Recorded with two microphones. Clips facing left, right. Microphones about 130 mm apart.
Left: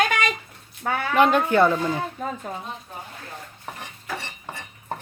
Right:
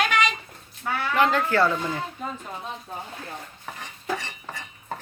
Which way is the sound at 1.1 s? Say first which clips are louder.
Left 4 dB; 20° left (ahead or behind).